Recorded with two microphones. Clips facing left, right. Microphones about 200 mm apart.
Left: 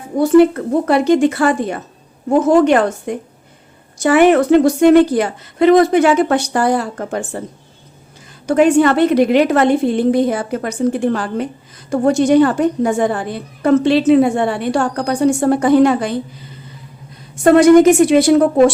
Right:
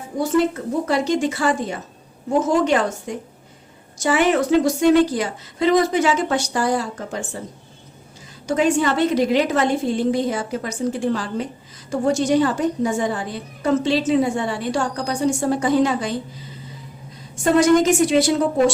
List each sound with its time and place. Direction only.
0.2 s a woman's voice: 60° left (ahead or behind)
8.4 s a woman's voice: 60° left (ahead or behind)